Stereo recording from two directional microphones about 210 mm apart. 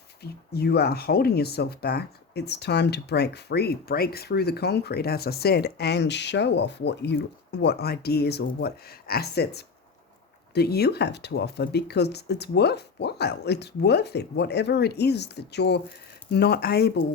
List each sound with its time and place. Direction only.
0.2 s speech: 50° left (ahead or behind)